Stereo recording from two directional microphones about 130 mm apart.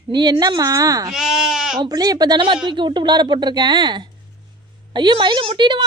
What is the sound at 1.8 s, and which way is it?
Speech, 30° right (ahead or behind).